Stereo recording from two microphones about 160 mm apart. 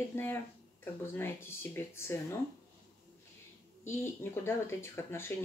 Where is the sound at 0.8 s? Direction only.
15° left (ahead or behind).